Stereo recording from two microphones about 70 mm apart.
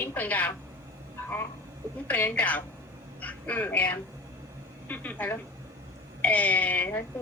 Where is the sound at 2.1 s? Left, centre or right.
Left.